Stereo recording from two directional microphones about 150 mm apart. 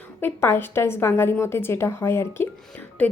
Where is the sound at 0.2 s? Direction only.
15° left (ahead or behind).